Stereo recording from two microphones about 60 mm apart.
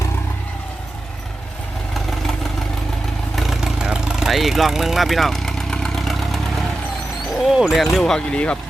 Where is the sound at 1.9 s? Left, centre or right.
Centre.